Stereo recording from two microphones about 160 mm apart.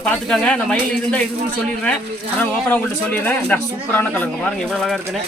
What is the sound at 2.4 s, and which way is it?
A man's voice, 10° left (ahead or behind).